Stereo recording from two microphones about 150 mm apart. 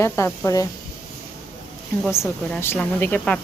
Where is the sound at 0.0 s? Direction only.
15° left (ahead or behind).